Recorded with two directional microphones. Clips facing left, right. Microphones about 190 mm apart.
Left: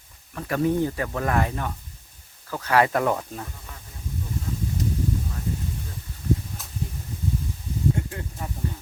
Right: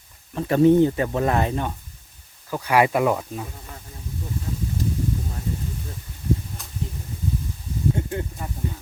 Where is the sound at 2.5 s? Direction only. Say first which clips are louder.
Right 2 dB; 10° right (ahead or behind).